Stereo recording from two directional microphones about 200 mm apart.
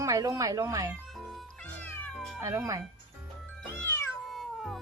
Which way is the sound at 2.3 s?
15° right (ahead or behind).